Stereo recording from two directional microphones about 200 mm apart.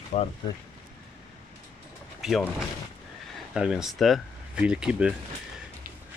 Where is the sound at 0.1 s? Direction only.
35° left (ahead or behind).